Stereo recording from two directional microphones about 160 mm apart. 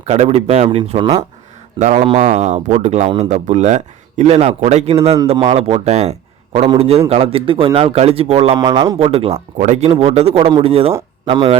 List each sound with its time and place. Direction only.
0.0 s a man's voice: 45° right (ahead or behind)